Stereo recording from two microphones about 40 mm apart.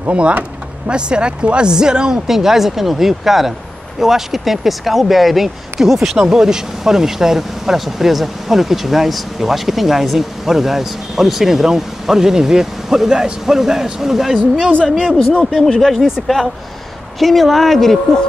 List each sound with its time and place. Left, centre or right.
0.8 s speech: right
15.0 s speech: right
15.5 s speech: centre
17.2 s speech: centre